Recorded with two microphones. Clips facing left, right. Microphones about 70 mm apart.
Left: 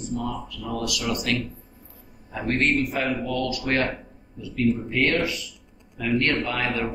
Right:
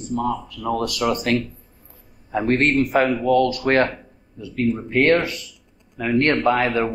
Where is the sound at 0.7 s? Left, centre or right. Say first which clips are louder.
Right 6 dB; right.